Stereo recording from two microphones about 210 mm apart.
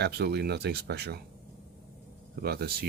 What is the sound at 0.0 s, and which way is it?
Speech, 50° right (ahead or behind).